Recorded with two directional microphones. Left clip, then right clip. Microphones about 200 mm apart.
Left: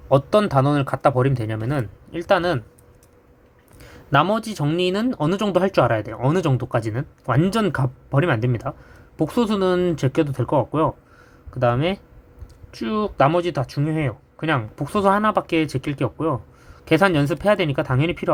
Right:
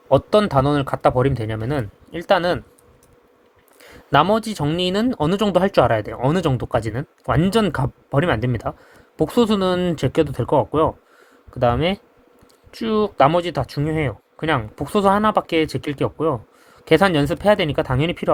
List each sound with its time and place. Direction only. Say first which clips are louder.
0.1 s speech: right 1 dB; 10° right (ahead or behind)
4.1 s speech: right 2 dB; 25° right (ahead or behind)